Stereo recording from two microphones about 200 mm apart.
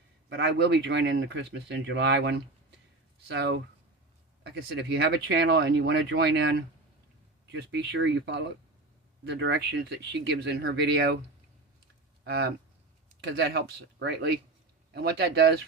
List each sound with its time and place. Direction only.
0.3 s speech: 60° right (ahead or behind)
12.2 s speech: 55° right (ahead or behind)
14.9 s speech: 55° right (ahead or behind)